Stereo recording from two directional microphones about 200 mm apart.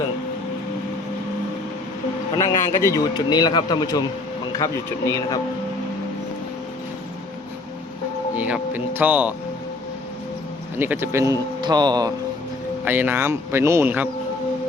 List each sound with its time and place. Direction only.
2.4 s speech: 15° left (ahead or behind)
8.4 s a man's voice: 5° right (ahead or behind)
10.8 s a man's voice: 10° right (ahead or behind)
12.8 s a man's voice: 10° right (ahead or behind)